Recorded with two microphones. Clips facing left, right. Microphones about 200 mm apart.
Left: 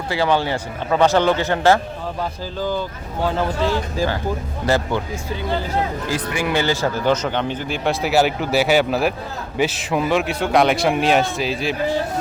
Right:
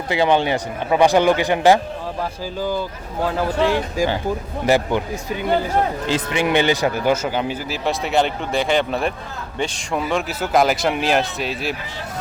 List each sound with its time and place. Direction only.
0.1 s speech: 20° right (ahead or behind); by 11.8 s centre (ahead or behind)